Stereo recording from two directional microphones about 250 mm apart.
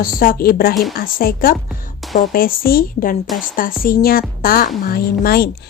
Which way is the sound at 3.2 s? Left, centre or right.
Centre.